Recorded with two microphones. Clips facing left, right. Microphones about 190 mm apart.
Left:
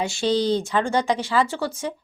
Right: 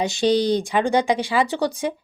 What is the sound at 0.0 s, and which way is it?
A woman's voice, 20° right (ahead or behind).